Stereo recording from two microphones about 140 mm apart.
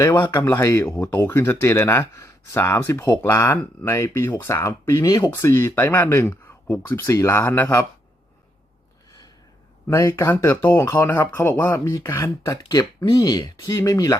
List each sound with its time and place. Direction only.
0.0 s speech: 20° left (ahead or behind)
9.8 s speech: 20° left (ahead or behind)